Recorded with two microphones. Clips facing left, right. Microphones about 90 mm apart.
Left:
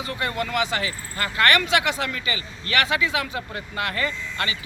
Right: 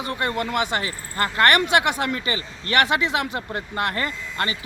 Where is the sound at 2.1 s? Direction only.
40° right (ahead or behind).